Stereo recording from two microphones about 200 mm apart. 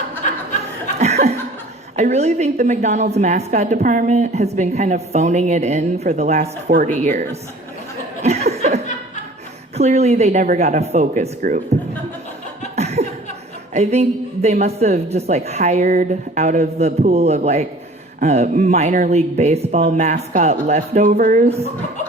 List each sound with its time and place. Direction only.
0.9 s laughter: 35° right (ahead or behind)
2.0 s a woman's voice: 35° right (ahead or behind)
8.2 s chuckle: 30° right (ahead or behind)
9.7 s a woman's voice: 30° right (ahead or behind)
12.7 s laughter: 35° right (ahead or behind)
13.7 s a woman's voice: 35° right (ahead or behind)